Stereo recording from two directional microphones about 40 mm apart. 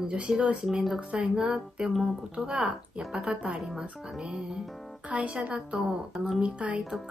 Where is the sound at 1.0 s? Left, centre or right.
Right.